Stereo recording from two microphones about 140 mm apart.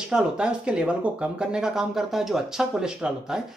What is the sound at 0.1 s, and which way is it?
Speech, 5° right (ahead or behind).